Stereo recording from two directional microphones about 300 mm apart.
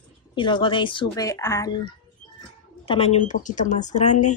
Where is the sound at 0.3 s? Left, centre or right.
Centre.